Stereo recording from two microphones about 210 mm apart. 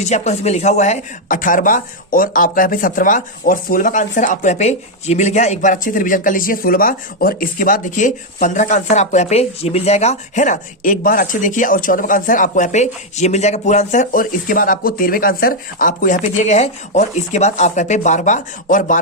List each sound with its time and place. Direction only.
0.0 s speech: 30° left (ahead or behind)